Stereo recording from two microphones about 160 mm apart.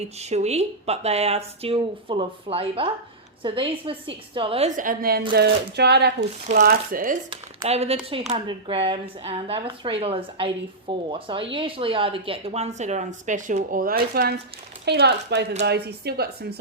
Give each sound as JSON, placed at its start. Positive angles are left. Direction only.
{"t": 0.2, "sound": "speech", "side_deg": -45}
{"t": 4.8, "sound": "speech", "side_deg": -65}
{"t": 5.3, "sound": "speech", "side_deg": -90}
{"t": 6.7, "sound": "speech", "side_deg": -60}
{"t": 7.6, "sound": "speech", "side_deg": -40}
{"t": 14.8, "sound": "speech", "side_deg": -90}